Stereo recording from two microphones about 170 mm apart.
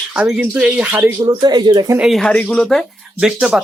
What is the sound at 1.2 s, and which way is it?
Speech, 25° right (ahead or behind).